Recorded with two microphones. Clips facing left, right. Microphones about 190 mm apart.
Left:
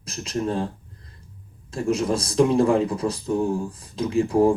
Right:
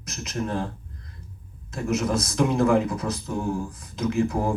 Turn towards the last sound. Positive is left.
turn(degrees=30)  # may be behind; listen again after turning